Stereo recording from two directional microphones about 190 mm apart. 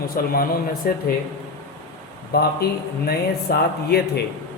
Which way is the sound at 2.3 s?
55° left (ahead or behind).